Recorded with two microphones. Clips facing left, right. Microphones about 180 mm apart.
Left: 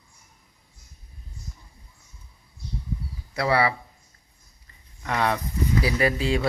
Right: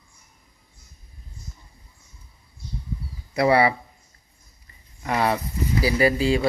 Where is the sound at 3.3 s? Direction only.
15° right (ahead or behind).